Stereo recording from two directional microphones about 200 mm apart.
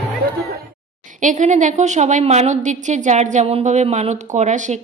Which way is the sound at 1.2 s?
40° right (ahead or behind).